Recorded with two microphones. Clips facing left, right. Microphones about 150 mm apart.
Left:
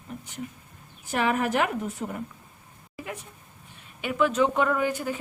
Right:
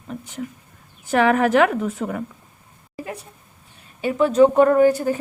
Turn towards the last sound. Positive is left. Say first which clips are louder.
# right 11 dB
turn(degrees=-40)  # may be behind; listen again after turning